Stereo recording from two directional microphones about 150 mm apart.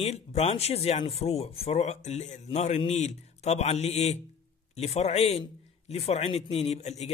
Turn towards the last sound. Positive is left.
turn(degrees=45)  # may be behind; listen again after turning